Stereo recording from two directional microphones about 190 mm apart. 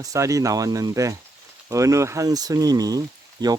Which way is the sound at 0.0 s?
15° right (ahead or behind).